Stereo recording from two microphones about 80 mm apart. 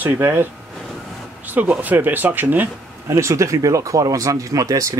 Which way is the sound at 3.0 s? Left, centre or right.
Right.